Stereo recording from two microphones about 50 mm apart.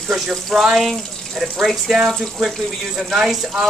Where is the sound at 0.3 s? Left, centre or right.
Centre.